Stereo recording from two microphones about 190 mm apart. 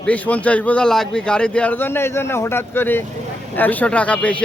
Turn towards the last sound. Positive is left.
turn(degrees=5)  # may be behind; listen again after turning